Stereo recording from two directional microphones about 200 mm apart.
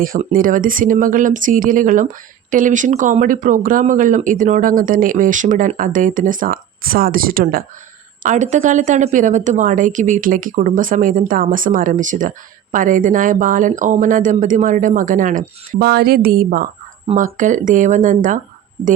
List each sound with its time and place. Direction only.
0.0 s speech: 45° right (ahead or behind)